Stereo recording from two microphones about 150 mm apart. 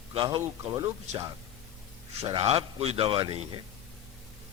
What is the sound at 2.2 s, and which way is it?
A man's voice, 40° right (ahead or behind).